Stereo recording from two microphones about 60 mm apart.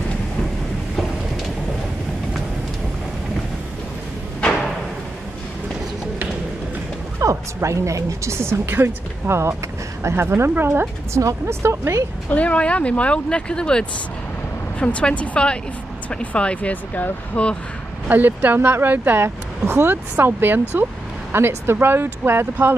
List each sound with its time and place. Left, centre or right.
7.2 s a woman's voice: right
12.3 s speech: left
18.0 s speech: right
19.2 s speech: right
19.9 s speech: right